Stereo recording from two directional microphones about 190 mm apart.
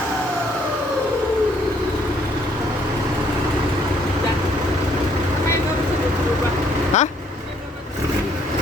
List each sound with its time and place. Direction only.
6.9 s vehicle: 40° left (ahead or behind)